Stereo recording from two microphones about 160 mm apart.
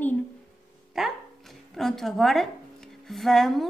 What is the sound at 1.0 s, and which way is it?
A woman's voice, centre (ahead or behind).